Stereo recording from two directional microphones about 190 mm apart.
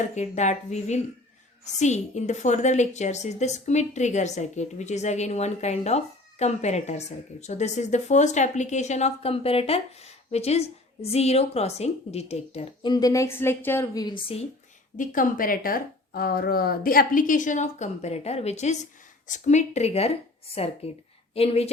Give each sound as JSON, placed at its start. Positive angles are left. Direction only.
{"t": 0.2, "sound": "a woman's voice", "side_deg": 40}
{"t": 12.9, "sound": "a woman's voice", "side_deg": 20}
{"t": 14.9, "sound": "a woman's voice", "side_deg": 45}